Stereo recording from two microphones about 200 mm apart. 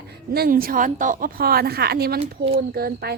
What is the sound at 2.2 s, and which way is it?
Speech, 30° right (ahead or behind).